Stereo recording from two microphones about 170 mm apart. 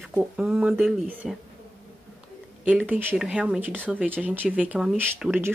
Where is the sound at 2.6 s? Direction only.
10° right (ahead or behind).